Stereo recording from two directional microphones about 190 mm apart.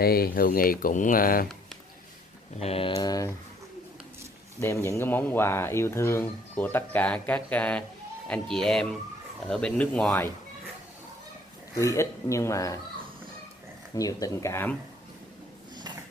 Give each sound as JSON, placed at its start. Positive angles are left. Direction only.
{"t": 0.0, "sound": "speech", "side_deg": 50}
{"t": 2.6, "sound": "speech", "side_deg": 30}
{"t": 3.0, "sound": "speech", "side_deg": 20}
{"t": 4.6, "sound": "speech", "side_deg": 15}
{"t": 11.7, "sound": "speech", "side_deg": 15}
{"t": 13.9, "sound": "speech", "side_deg": 15}